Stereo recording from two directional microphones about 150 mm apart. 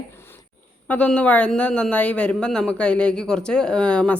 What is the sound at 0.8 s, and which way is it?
Speech, 10° left (ahead or behind).